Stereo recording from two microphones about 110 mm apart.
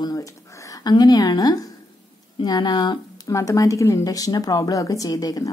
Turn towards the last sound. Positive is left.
turn(degrees=35)  # may be behind; listen again after turning